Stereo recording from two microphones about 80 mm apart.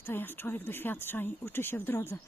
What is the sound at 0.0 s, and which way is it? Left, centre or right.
Speech, left.